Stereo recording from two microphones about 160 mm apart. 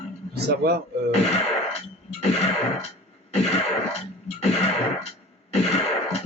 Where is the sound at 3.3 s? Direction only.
40° left (ahead or behind).